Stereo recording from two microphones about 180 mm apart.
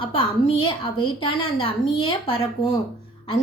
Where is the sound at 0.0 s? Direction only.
30° left (ahead or behind).